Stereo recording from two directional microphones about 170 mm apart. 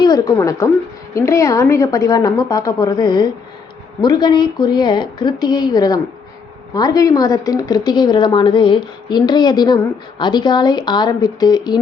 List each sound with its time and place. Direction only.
0.0 s speech: 20° left (ahead or behind)